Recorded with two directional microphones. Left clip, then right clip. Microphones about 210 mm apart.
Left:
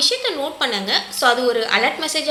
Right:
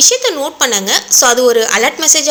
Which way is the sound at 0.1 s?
50° right (ahead or behind).